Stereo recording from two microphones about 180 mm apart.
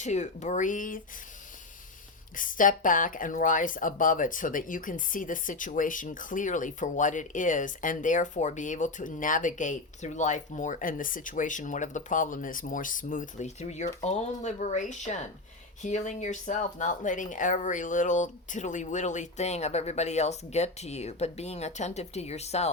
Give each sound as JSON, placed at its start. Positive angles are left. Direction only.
{"t": 0.0, "sound": "speech", "side_deg": 40}
{"t": 2.3, "sound": "speech", "side_deg": 50}